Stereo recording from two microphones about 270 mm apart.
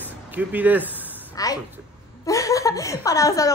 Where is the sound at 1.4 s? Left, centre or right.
Centre.